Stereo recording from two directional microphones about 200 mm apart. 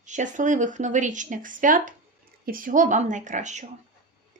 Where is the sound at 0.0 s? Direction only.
40° right (ahead or behind).